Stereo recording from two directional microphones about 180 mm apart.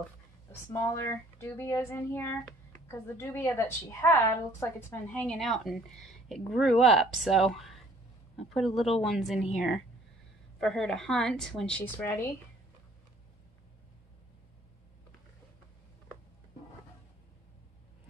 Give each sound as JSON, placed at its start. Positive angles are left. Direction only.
{"t": 0.5, "sound": "a woman's voice", "side_deg": 15}
{"t": 10.6, "sound": "a woman's voice", "side_deg": 5}